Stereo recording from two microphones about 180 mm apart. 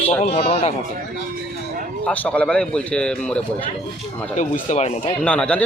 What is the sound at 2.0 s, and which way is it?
A man's voice, 10° left (ahead or behind).